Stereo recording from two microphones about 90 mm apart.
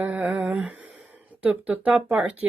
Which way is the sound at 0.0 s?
20° right (ahead or behind).